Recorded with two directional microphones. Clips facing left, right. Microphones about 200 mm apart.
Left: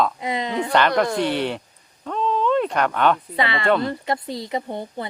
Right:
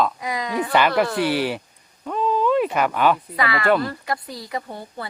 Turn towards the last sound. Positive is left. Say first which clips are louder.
# left 3 dB
turn(degrees=20)  # may be behind; listen again after turning